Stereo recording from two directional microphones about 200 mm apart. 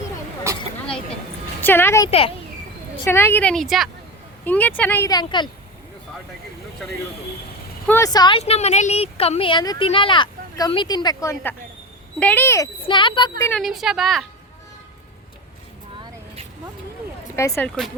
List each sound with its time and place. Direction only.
1.6 s speech: 10° left (ahead or behind)
2.0 s speech: 30° left (ahead or behind)
3.0 s a woman's voice: 10° left (ahead or behind)
7.9 s a woman's voice: 15° left (ahead or behind)
12.8 s speech: 25° left (ahead or behind)
13.6 s speech: centre (ahead or behind)
17.3 s a woman's voice: 15° left (ahead or behind)